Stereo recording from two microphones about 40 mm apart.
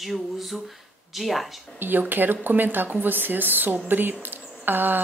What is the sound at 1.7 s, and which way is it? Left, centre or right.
A woman's voice, right.